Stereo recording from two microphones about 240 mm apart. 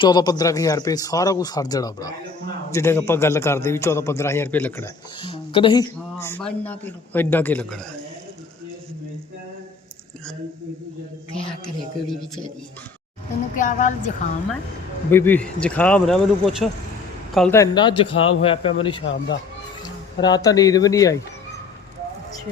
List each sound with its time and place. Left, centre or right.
0.0 s speech: centre
5.2 s speech: left; by 7.8 s centre
13.6 s speech: left
15.1 s a man's voice: centre